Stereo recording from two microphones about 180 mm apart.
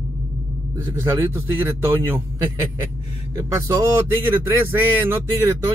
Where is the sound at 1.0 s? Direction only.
15° right (ahead or behind).